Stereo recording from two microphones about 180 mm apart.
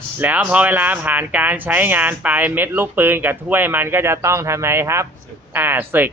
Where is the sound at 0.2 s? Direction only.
10° right (ahead or behind).